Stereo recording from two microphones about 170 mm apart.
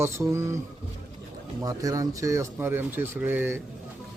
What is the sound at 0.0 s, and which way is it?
Speech, 15° right (ahead or behind).